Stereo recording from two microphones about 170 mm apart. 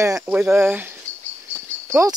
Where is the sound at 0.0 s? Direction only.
20° right (ahead or behind).